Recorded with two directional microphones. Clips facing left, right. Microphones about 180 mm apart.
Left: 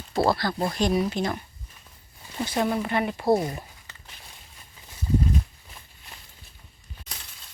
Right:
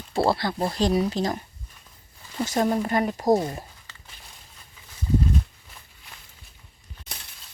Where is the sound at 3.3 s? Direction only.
10° left (ahead or behind).